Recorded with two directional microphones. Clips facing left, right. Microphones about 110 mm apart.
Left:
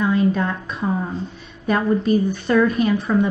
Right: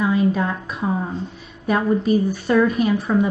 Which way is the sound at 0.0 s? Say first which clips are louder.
Even; 5° right (ahead or behind).